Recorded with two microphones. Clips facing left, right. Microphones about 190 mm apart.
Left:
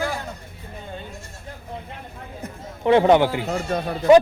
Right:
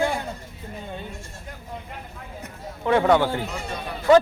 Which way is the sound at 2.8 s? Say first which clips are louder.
Left 4 dB; 20° left (ahead or behind).